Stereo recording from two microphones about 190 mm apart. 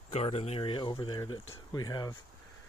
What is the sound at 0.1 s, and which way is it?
Speech, 35° left (ahead or behind).